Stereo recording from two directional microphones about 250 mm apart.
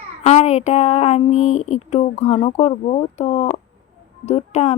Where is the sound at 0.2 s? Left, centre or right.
Left.